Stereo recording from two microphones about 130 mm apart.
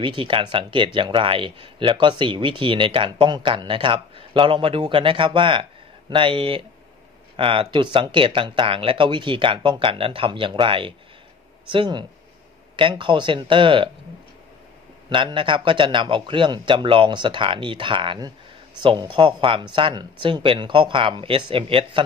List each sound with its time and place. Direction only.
0.0 s speech: 40° right (ahead or behind)
15.0 s speech: 40° right (ahead or behind)